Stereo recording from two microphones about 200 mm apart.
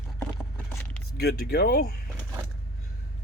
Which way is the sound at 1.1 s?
50° left (ahead or behind).